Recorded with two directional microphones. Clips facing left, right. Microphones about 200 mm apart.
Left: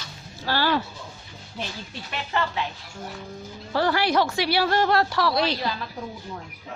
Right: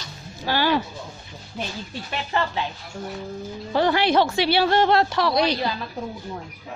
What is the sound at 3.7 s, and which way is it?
A woman's voice, 20° right (ahead or behind).